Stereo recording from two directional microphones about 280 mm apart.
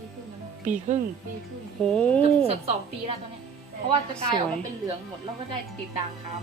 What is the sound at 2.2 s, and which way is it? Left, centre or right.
Speech, right.